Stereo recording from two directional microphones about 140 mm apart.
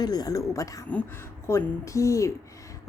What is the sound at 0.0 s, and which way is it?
Speech, 30° left (ahead or behind).